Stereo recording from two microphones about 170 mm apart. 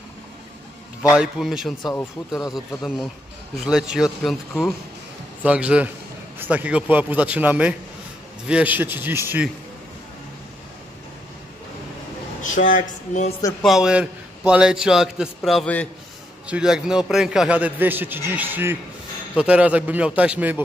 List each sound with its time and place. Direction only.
1.1 s a man's voice: 5° right (ahead or behind)
12.4 s speech: 50° left (ahead or behind)
13.6 s a man's voice: centre (ahead or behind)
16.4 s a man's voice: 5° right (ahead or behind)